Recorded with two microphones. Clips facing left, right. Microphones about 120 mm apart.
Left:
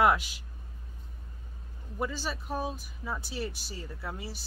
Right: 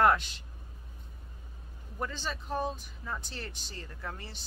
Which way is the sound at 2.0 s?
10° left (ahead or behind).